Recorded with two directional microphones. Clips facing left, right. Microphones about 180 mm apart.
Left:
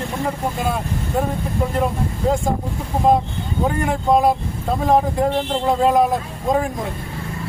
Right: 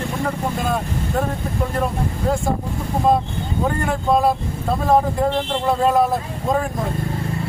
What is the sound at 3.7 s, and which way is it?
Speech, 15° left (ahead or behind).